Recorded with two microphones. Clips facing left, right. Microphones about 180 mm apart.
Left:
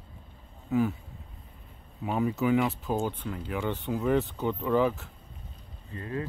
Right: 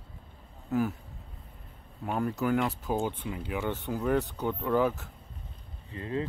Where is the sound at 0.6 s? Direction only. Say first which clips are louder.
Left 2 dB; centre (ahead or behind).